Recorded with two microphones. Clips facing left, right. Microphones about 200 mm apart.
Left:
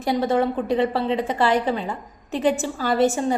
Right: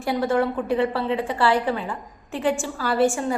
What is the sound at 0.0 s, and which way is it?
A woman's voice, 20° left (ahead or behind).